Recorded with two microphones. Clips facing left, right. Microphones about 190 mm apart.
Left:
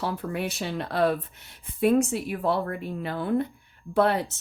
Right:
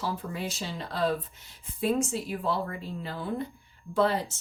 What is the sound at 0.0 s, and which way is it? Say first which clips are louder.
Speech: left 4 dB; 65° left (ahead or behind).